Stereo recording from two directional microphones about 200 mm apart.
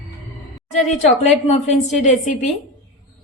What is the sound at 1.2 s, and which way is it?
A woman's voice, 35° left (ahead or behind).